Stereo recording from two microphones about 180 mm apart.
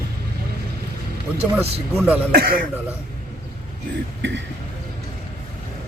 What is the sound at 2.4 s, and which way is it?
Speech, 60° right (ahead or behind).